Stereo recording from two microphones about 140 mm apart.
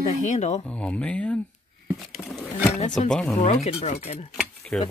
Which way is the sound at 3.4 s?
50° left (ahead or behind).